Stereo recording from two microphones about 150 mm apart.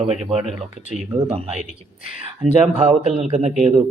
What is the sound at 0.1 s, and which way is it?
Speech, 45° right (ahead or behind).